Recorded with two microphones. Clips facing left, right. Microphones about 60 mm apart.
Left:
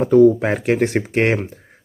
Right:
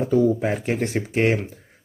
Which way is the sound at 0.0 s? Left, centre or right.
Left.